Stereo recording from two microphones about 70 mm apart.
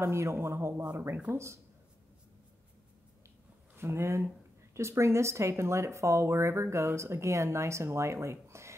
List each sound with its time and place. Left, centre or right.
0.0 s a man's voice: right
3.7 s speech: right